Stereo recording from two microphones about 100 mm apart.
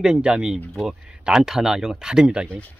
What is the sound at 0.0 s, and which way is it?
Speech, 5° right (ahead or behind).